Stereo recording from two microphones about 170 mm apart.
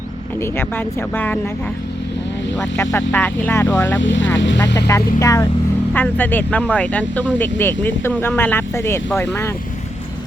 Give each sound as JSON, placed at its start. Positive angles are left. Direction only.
{"t": 0.3, "sound": "speech", "side_deg": 15}
{"t": 2.7, "sound": "speech", "side_deg": 15}
{"t": 4.0, "sound": "speech", "side_deg": 90}
{"t": 4.9, "sound": "speech", "side_deg": 20}